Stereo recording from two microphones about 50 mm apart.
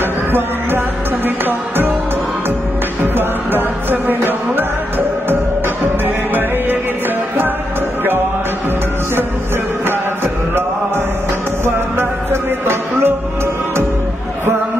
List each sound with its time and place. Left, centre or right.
0.0 s music: right
3.0 s music: right
9.8 s music: right
11.6 s music: right